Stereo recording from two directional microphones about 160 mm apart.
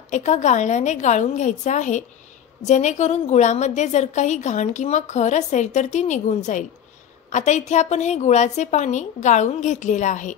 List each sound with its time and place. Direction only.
0.1 s a woman's voice: 45° left (ahead or behind)